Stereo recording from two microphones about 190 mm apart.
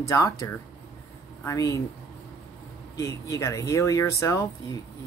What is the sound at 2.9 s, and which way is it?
Speech, 15° left (ahead or behind).